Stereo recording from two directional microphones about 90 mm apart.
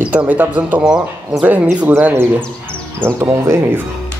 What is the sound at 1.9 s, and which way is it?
Speech, 25° right (ahead or behind).